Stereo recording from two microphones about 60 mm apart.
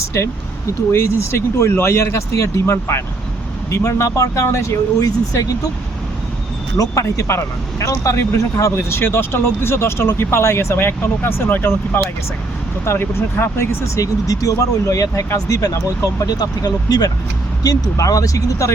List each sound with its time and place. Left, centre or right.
0.9 s speech: left
6.7 s speech: left
8.9 s speech: left
12.8 s speech: left
16.2 s speech: left
17.6 s speech: left